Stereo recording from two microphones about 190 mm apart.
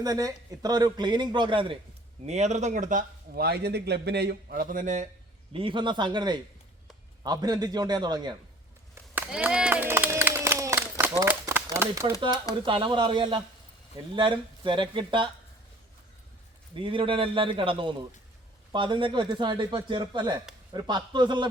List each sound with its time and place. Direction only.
0.0 s a man's voice: 20° right (ahead or behind)
2.2 s speech: 35° right (ahead or behind)
5.5 s a man's voice: 25° right (ahead or behind)
9.1 s run: 10° right (ahead or behind)
12.6 s a man's voice: 25° right (ahead or behind)
16.7 s a man's voice: 25° right (ahead or behind)